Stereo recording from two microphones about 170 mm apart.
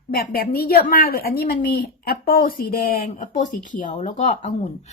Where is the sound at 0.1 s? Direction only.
60° left (ahead or behind).